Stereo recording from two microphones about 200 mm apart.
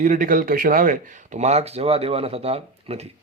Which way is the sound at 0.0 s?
40° right (ahead or behind).